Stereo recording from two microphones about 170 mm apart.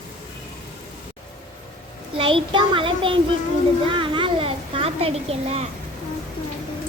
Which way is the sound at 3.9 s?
30° right (ahead or behind).